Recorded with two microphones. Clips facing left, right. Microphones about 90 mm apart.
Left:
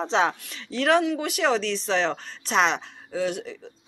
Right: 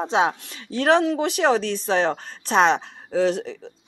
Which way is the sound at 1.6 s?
50° right (ahead or behind).